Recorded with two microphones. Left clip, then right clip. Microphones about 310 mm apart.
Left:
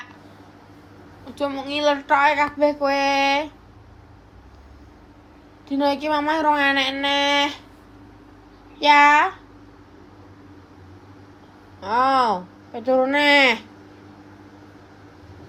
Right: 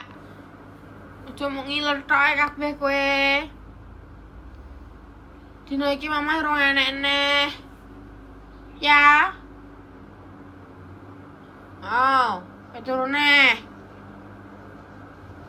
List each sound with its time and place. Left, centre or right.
1.4 s child singing: centre
5.6 s child singing: centre
8.8 s child singing: left
11.8 s child singing: left